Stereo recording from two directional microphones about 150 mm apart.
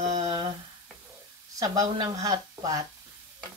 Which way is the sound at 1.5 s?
25° right (ahead or behind).